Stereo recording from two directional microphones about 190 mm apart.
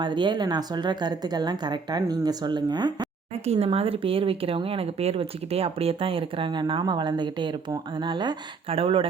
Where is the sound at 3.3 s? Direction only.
35° right (ahead or behind).